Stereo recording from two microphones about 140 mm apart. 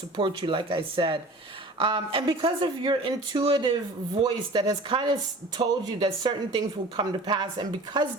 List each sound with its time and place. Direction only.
0.2 s speech: 35° right (ahead or behind)